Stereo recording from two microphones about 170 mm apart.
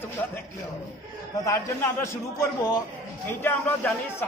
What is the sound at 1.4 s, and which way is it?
A man's voice, 15° left (ahead or behind).